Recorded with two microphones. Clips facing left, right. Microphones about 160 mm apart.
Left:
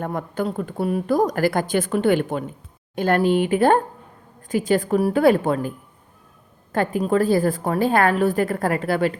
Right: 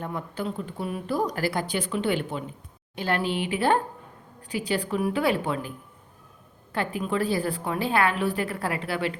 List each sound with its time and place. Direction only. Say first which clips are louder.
0.0 s speech: left 6 dB; 50° left (ahead or behind)
6.7 s speech: left 7 dB; 45° left (ahead or behind)